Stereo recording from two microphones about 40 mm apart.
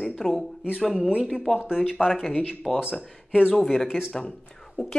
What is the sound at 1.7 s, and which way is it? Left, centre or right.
Speech, centre.